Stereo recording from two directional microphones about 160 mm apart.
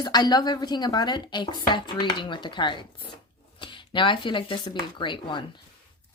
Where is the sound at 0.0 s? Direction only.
25° left (ahead or behind).